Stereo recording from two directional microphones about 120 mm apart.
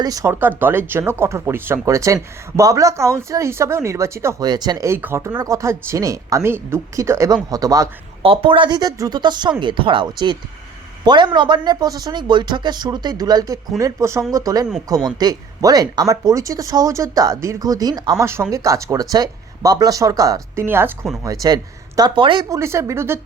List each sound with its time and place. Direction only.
0.0 s speech: 30° right (ahead or behind)
0.3 s speech: 15° right (ahead or behind)
4.4 s speech: 35° right (ahead or behind)
4.9 s speech: 20° right (ahead or behind)
8.2 s speech: 50° right (ahead or behind); by 20.7 s 30° right (ahead or behind)
20.7 s speech: 20° right (ahead or behind)
21.2 s speech: 30° right (ahead or behind)
22.4 s speech: 25° right (ahead or behind)